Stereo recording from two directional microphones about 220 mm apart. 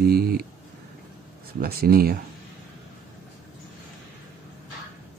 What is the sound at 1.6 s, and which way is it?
Speech, 45° right (ahead or behind).